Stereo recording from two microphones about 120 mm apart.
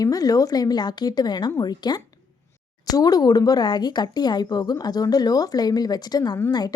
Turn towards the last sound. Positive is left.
turn(degrees=35)  # may be behind; listen again after turning